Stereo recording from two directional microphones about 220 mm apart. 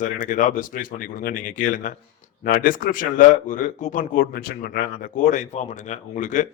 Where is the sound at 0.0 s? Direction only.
35° left (ahead or behind).